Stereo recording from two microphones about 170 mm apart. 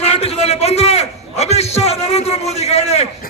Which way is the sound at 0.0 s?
35° left (ahead or behind).